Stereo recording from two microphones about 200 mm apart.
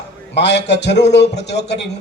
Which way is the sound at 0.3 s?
60° left (ahead or behind).